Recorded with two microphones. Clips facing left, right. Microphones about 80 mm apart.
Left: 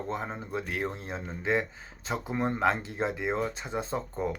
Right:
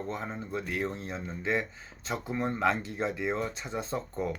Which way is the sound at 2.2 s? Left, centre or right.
Left.